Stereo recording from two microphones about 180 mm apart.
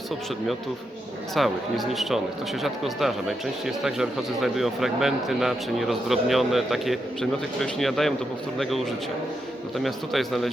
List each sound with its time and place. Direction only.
1.4 s speech: centre (ahead or behind)